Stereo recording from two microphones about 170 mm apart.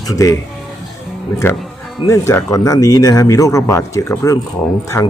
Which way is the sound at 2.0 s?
15° left (ahead or behind).